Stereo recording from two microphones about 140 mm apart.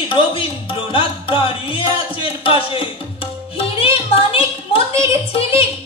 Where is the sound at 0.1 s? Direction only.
40° left (ahead or behind).